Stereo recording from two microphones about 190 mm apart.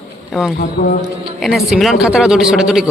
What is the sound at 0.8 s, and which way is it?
Speech, 35° left (ahead or behind).